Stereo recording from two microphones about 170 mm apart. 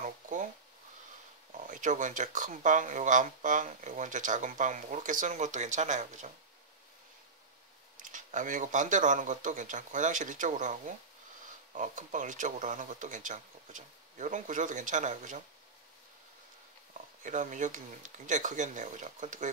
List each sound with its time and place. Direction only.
0.0 s a sound: 50° right (ahead or behind)
1.5 s speech: 50° right (ahead or behind)
8.0 s speech: 50° right (ahead or behind)
17.2 s speech: 50° right (ahead or behind)